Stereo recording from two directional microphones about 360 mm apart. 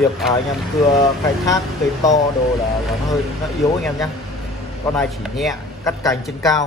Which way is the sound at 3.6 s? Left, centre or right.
Centre.